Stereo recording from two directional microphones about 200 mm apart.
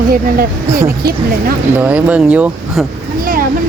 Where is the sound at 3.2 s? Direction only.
45° right (ahead or behind).